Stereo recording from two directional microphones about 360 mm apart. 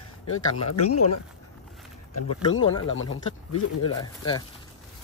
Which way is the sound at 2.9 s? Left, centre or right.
Left.